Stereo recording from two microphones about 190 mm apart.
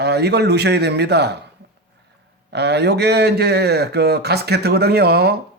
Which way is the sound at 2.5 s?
60° right (ahead or behind).